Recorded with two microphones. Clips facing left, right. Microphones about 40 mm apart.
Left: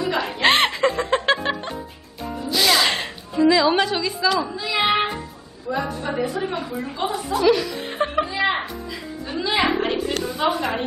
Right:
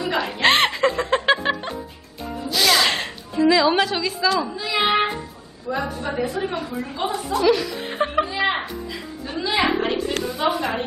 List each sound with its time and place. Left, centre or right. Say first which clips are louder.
0.0 s music: even; centre
5.7 s a woman's voice: even; centre
7.1 s chuckle: even; centre
10.2 s a woman's voice: even; centre